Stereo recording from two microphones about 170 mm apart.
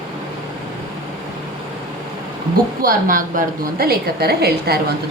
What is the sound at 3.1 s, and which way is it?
A woman's voice, 55° right (ahead or behind).